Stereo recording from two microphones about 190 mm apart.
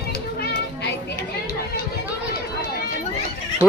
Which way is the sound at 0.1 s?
55° left (ahead or behind).